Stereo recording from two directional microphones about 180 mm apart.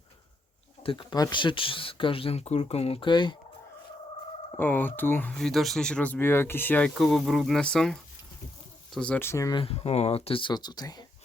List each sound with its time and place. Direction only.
0.8 s speech: 30° left (ahead or behind)
4.5 s speech: 10° left (ahead or behind)